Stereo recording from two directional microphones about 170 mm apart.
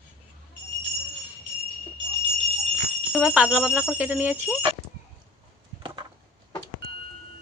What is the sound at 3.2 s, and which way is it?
Speech, 5° right (ahead or behind).